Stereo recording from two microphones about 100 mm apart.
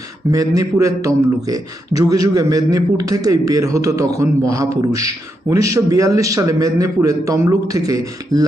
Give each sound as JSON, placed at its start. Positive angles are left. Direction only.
{"t": 0.3, "sound": "a man's voice", "side_deg": -35}